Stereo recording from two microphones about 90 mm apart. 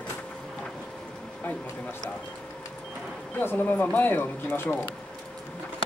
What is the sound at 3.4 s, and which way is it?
Speech, 25° left (ahead or behind).